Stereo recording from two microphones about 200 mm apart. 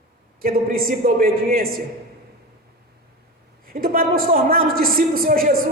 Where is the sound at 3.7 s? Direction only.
45° right (ahead or behind).